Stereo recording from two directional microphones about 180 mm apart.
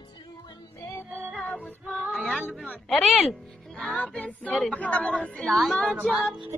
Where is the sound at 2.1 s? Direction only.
Centre (ahead or behind).